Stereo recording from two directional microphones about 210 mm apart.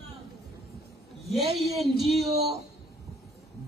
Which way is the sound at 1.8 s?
Centre (ahead or behind).